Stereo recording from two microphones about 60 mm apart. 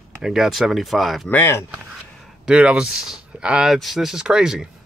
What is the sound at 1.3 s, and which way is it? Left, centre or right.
Speech, left.